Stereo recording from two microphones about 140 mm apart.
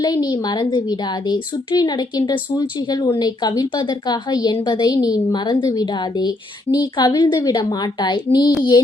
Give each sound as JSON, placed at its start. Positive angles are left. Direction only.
{"t": 0.0, "sound": "a woman's voice", "side_deg": 30}